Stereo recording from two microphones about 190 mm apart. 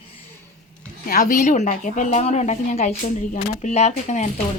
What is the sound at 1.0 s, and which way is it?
A woman's voice, 45° left (ahead or behind).